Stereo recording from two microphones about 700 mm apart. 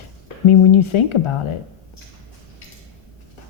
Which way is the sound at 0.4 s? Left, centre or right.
Left.